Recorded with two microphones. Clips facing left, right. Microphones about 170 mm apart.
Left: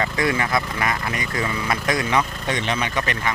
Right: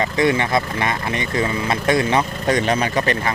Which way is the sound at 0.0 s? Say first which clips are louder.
Right 4 dB; 25° right (ahead or behind).